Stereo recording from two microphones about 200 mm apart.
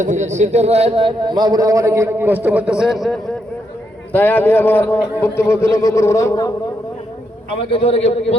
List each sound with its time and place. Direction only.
0.0 s a man's voice: 35° right (ahead or behind); by 6.5 s 15° left (ahead or behind)
7.7 s a man's voice: 30° left (ahead or behind)